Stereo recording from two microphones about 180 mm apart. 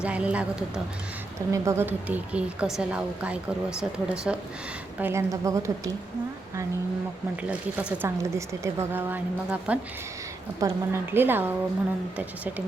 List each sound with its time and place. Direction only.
0.0 s speech: 5° right (ahead or behind)
7.4 s speech: 10° right (ahead or behind)